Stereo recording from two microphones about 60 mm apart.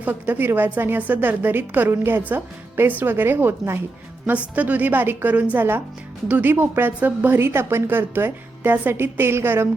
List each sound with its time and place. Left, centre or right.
0.0 s a woman's voice: right